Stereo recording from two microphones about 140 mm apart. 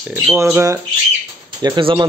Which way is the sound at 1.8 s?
40° right (ahead or behind).